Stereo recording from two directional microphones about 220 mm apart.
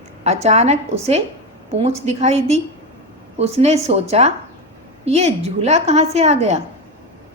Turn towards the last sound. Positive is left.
turn(degrees=-30)  # may be behind; listen again after turning